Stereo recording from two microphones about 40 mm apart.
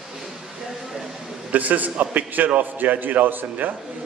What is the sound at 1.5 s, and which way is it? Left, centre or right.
A man's voice, right.